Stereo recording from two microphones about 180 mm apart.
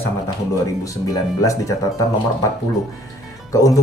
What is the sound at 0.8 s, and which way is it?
Speech, 20° left (ahead or behind).